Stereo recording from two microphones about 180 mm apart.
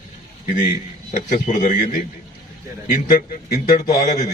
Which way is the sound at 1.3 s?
45° left (ahead or behind).